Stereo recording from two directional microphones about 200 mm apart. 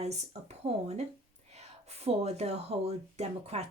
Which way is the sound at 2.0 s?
30° right (ahead or behind).